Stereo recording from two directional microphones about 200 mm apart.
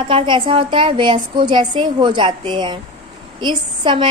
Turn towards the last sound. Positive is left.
turn(degrees=-25)  # may be behind; listen again after turning